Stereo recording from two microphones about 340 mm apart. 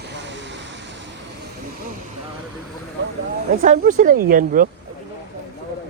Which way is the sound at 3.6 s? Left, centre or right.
Right.